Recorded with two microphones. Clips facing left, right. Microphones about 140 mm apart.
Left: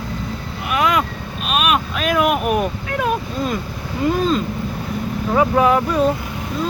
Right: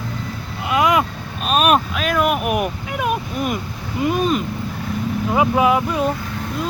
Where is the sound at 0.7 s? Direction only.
20° right (ahead or behind).